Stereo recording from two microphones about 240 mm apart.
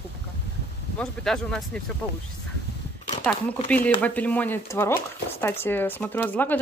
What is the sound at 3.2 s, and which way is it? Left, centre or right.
Speech, centre.